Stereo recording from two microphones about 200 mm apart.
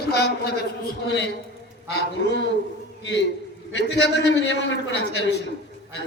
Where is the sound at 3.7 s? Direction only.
60° left (ahead or behind).